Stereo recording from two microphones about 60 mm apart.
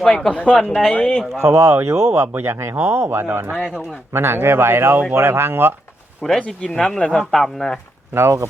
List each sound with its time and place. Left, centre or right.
0.0 s speech: centre
1.4 s speech: right
2.7 s speech: right
6.2 s speech: centre
6.7 s speech: centre
8.1 s speech: right